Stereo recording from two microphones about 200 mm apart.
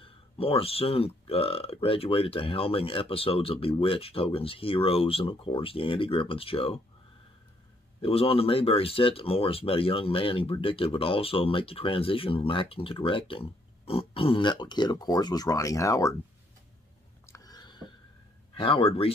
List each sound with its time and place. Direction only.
0.0 s speech: 30° left (ahead or behind)
8.0 s speech: 30° left (ahead or behind)
17.3 s a sound: 20° left (ahead or behind)
18.6 s speech: 25° left (ahead or behind)